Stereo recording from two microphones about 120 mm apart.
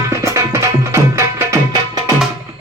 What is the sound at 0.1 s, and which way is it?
Tabla, 25° right (ahead or behind).